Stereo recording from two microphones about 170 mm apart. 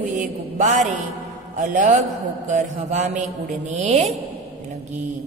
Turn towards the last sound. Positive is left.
turn(degrees=-40)  # may be behind; listen again after turning